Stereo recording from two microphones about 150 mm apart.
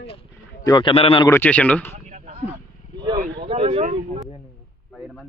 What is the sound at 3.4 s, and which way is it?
Speech, 40° right (ahead or behind).